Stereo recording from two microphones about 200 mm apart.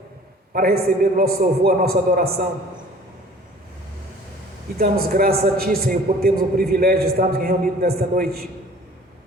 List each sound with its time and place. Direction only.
0.5 s a man's voice: 45° right (ahead or behind)
4.8 s a man's voice: 50° right (ahead or behind)